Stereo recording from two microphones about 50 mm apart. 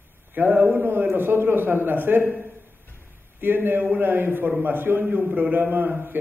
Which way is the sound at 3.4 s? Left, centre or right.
Right.